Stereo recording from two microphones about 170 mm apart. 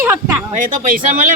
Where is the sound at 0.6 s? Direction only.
50° right (ahead or behind).